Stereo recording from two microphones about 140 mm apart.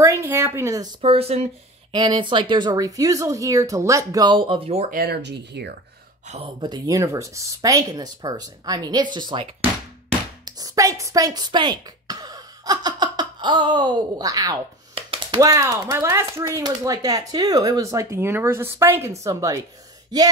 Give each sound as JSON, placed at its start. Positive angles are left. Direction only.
{"t": 0.0, "sound": "a sound", "side_deg": -20}
{"t": 1.0, "sound": "speech", "side_deg": -45}
{"t": 1.9, "sound": "speech", "side_deg": -30}
{"t": 6.2, "sound": "speech", "side_deg": -50}
{"t": 6.6, "sound": "speech", "side_deg": -30}